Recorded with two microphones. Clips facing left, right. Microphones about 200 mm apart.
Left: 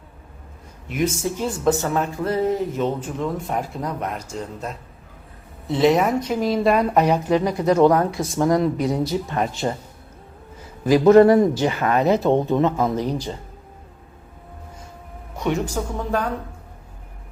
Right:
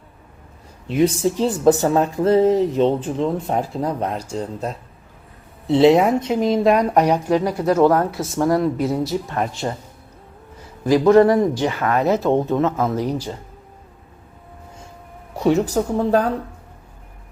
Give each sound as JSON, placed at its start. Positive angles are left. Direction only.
{"t": 0.9, "sound": "a woman's voice", "side_deg": -30}
{"t": 11.0, "sound": "speech", "side_deg": 25}
{"t": 12.0, "sound": "a woman's voice", "side_deg": 0}
{"t": 15.4, "sound": "speech", "side_deg": -35}